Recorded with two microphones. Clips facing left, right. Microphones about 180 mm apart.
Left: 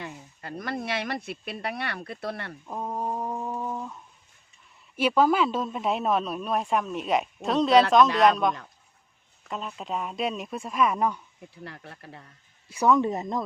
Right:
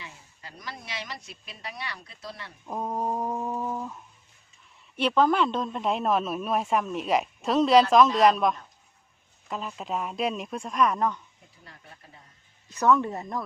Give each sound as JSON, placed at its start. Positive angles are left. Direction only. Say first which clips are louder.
{"t": 0.0, "sound": "speech", "louder": "left 7 dB", "side_deg": 55}
{"t": 2.6, "sound": "a sound", "louder": "right 2 dB", "side_deg": -10}
{"t": 4.9, "sound": "speech", "louder": "left 1 dB", "side_deg": 5}
{"t": 11.6, "sound": "speech", "louder": "left 9 dB", "side_deg": 70}
{"t": 12.6, "sound": "speech", "louder": "left 1 dB", "side_deg": 10}